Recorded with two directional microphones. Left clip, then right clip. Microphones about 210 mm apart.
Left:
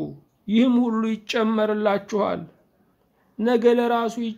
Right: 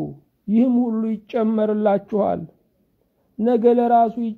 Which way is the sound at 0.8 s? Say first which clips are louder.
Even; 5° right (ahead or behind).